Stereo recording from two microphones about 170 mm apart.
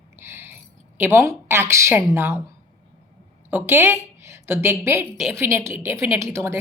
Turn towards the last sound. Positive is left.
turn(degrees=-15)  # may be behind; listen again after turning